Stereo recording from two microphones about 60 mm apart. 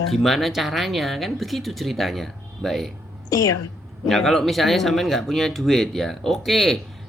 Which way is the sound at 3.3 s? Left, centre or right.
Left.